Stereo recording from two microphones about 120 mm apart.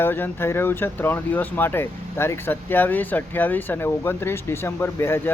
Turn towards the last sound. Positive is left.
turn(degrees=20)  # may be behind; listen again after turning